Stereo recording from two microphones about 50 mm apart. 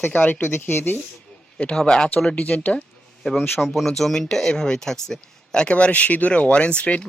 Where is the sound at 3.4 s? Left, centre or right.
Left.